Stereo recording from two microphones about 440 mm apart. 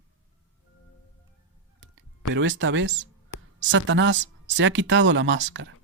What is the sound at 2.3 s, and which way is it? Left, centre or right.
Speech, right.